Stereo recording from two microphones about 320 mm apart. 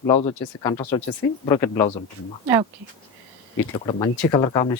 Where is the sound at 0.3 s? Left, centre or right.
Centre.